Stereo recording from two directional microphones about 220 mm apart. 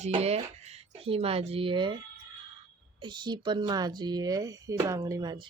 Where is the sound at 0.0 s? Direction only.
30° right (ahead or behind).